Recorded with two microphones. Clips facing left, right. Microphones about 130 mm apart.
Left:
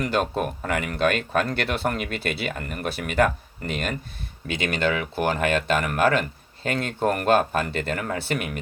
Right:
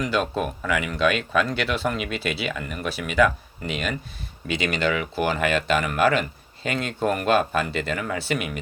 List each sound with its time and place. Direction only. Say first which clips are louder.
0.0 s speech: even; 50° left (ahead or behind)